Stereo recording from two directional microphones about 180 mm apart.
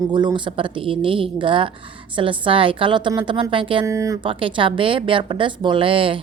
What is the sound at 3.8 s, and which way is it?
Speech, 15° right (ahead or behind).